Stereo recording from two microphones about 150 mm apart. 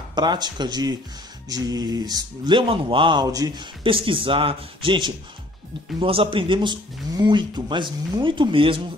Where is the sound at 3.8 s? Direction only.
35° right (ahead or behind).